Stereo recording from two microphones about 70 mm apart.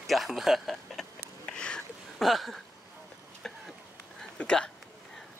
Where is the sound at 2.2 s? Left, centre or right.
Centre.